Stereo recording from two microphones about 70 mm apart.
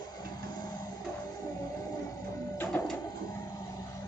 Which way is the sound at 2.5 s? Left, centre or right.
Left.